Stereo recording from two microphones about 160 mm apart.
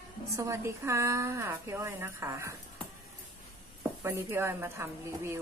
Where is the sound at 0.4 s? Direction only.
15° right (ahead or behind).